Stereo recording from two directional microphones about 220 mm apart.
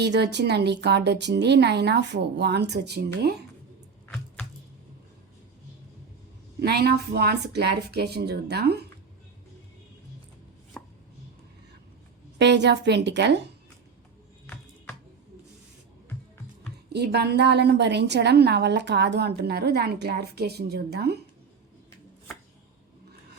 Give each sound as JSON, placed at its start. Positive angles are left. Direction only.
{"t": 0.0, "sound": "a woman's voice", "side_deg": -50}
{"t": 6.6, "sound": "a woman's voice", "side_deg": -45}
{"t": 10.8, "sound": "chopping", "side_deg": 5}
{"t": 12.4, "sound": "a woman's voice", "side_deg": -50}
{"t": 14.4, "sound": "computer keyboard", "side_deg": 5}
{"t": 16.9, "sound": "a woman's voice", "side_deg": -50}